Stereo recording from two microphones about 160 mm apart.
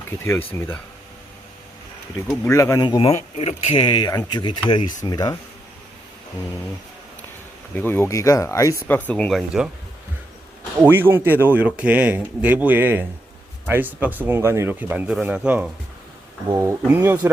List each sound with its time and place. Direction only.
0.3 s speech: 15° left (ahead or behind)
2.3 s speech: 20° left (ahead or behind)
3.1 s speech: 40° left (ahead or behind); by 5.4 s 25° left (ahead or behind)
7.7 s speech: 10° left (ahead or behind)
10.8 s speech: 15° right (ahead or behind)